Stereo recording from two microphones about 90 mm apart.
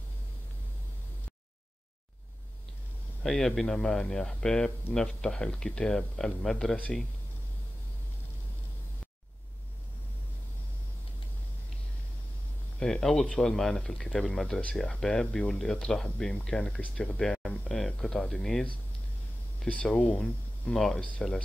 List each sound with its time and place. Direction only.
3.3 s speech: 5° left (ahead or behind)
12.7 s speech: 5° left (ahead or behind)
20.7 s speech: 5° left (ahead or behind)